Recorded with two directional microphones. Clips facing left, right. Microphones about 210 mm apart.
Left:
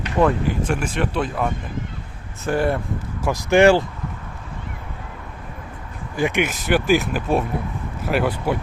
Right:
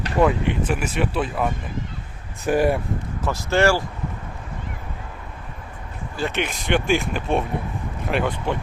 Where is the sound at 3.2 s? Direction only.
15° left (ahead or behind).